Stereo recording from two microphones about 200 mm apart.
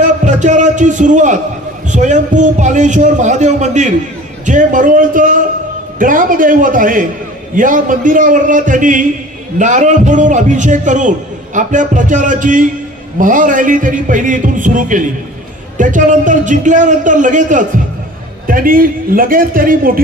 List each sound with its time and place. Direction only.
0.2 s a man's voice: 40° right (ahead or behind)